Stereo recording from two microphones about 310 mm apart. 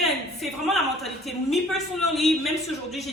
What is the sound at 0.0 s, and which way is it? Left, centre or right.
A woman's voice, centre.